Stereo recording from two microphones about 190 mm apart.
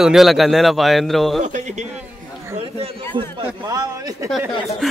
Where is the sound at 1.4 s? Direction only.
40° right (ahead or behind).